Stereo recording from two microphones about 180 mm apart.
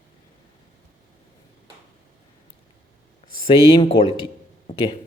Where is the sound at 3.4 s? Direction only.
30° left (ahead or behind).